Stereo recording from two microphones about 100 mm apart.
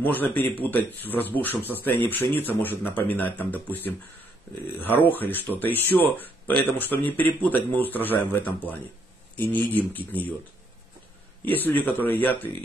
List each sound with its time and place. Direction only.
0.0 s speech: 20° left (ahead or behind)
11.4 s speech: 20° left (ahead or behind)